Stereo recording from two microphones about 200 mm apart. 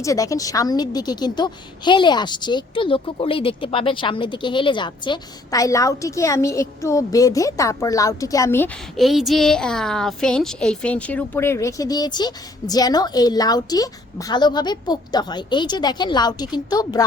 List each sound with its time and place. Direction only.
0.0 s a woman's voice: 15° left (ahead or behind)
9.0 s a woman's voice: centre (ahead or behind); by 17.0 s 20° left (ahead or behind)